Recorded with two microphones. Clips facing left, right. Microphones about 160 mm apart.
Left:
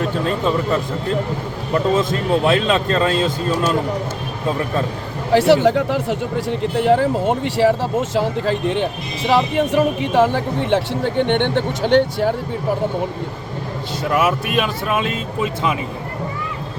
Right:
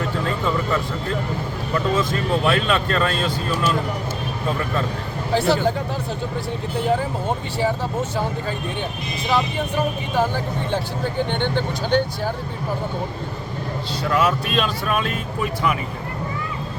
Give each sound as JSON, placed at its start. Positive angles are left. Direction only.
{"t": 0.3, "sound": "speech", "side_deg": 20}
{"t": 5.3, "sound": "speech", "side_deg": 85}
{"t": 14.1, "sound": "speech", "side_deg": 5}